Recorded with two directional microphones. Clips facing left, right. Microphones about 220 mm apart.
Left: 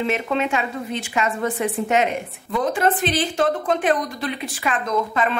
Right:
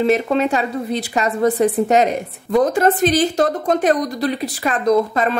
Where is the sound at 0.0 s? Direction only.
40° right (ahead or behind).